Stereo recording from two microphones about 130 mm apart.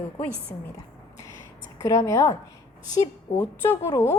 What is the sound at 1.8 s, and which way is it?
Speech, 25° left (ahead or behind).